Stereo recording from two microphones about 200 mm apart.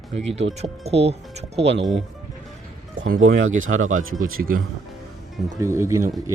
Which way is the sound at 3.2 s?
80° right.